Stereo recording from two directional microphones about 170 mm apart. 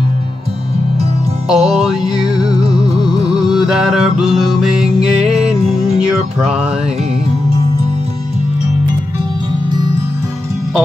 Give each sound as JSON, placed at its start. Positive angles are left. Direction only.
{"t": 1.5, "sound": "music", "side_deg": -5}